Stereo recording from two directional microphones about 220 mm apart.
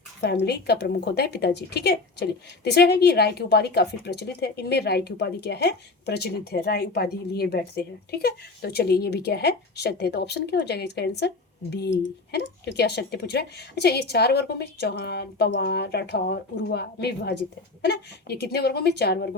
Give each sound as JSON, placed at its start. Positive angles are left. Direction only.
{"t": 0.2, "sound": "speech", "side_deg": 50}